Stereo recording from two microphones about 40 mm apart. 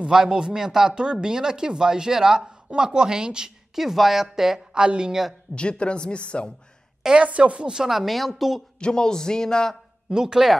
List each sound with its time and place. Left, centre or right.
0.0 s speech: centre
5.5 s speech: left
7.2 s speech: right
7.8 s speech: centre
8.7 s a man's voice: left
10.0 s a man's voice: centre